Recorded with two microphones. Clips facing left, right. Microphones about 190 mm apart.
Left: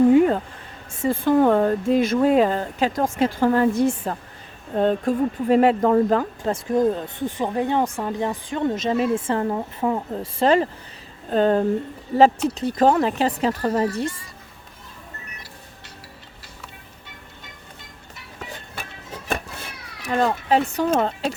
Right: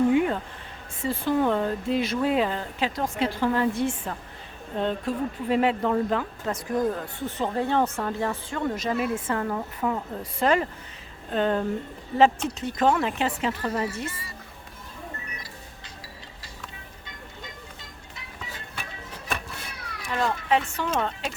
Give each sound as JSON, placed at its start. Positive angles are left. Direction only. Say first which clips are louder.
{"t": 0.1, "sound": "a sound", "louder": "left 7 dB", "side_deg": 40}
{"t": 1.0, "sound": "speech", "louder": "left 6 dB", "side_deg": 50}
{"t": 6.5, "sound": "speech", "louder": "left 6 dB", "side_deg": 25}
{"t": 14.1, "sound": "speech", "louder": "left 1 dB", "side_deg": -5}
{"t": 20.0, "sound": "speech", "louder": "left 6 dB", "side_deg": 45}